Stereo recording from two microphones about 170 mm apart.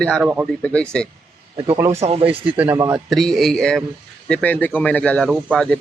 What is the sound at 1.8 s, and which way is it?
Speech, 40° right (ahead or behind).